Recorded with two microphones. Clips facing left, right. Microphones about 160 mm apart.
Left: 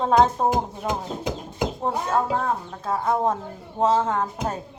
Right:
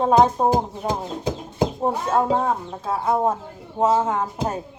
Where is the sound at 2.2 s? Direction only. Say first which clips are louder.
Right 3 dB; 20° right (ahead or behind).